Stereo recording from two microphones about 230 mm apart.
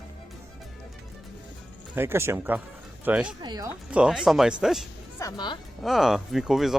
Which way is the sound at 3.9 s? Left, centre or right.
Centre.